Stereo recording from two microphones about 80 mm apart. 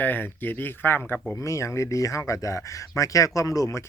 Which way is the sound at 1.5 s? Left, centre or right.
Left.